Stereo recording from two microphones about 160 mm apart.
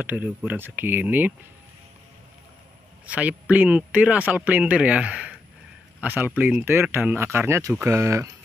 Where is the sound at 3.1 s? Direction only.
10° right (ahead or behind).